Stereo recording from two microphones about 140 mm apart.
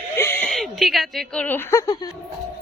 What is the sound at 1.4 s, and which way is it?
Speech, 15° left (ahead or behind).